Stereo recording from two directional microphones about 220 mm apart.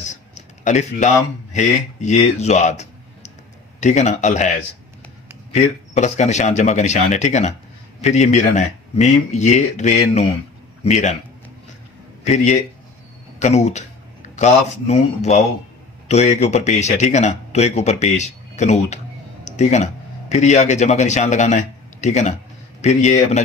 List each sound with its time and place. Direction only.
0.1 s speech: 30° left (ahead or behind)
5.5 s a man's voice: 30° left (ahead or behind)
13.4 s speech: 30° left (ahead or behind)